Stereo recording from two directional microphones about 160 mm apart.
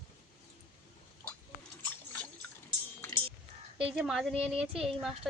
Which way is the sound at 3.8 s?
5° right (ahead or behind).